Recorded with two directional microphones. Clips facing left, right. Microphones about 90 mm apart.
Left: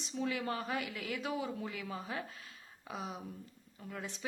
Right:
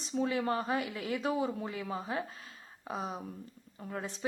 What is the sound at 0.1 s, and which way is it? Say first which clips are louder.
Speech: right 5 dB; 30° right (ahead or behind).